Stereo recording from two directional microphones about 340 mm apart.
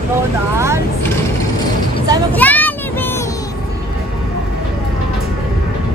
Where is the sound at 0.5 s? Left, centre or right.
Centre.